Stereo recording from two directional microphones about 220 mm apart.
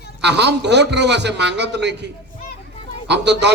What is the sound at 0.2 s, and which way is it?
A man's voice, 50° right (ahead or behind).